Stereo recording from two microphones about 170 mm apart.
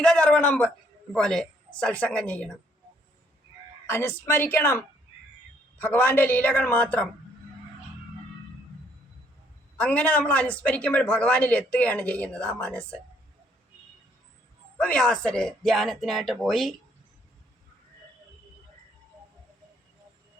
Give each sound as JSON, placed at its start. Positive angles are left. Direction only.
{"t": 0.0, "sound": "speech", "side_deg": 5}
{"t": 3.8, "sound": "speech", "side_deg": 15}
{"t": 5.8, "sound": "speech", "side_deg": 10}
{"t": 9.7, "sound": "speech", "side_deg": 10}
{"t": 14.8, "sound": "speech", "side_deg": 5}